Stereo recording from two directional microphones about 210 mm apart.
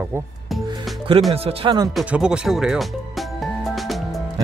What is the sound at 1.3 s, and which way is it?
Speech, 25° right (ahead or behind).